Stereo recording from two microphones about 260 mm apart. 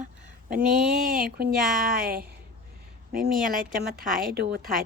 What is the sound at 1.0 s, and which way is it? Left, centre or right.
Speech, right.